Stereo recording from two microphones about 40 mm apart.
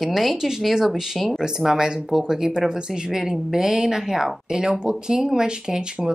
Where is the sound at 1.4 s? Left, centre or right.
Centre.